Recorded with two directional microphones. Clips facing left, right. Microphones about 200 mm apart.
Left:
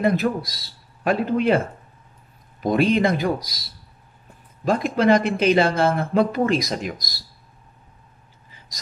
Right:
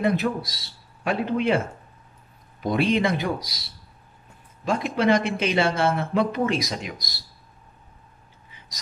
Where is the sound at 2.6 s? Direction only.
45° left (ahead or behind).